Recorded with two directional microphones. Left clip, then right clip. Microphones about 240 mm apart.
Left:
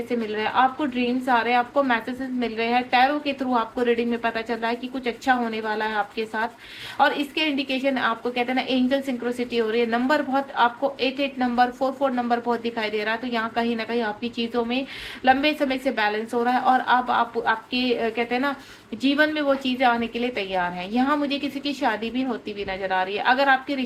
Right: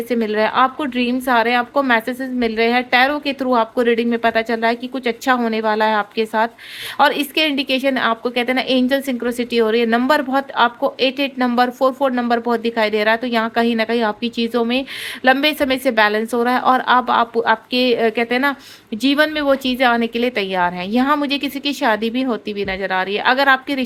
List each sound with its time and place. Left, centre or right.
0.1 s speech: right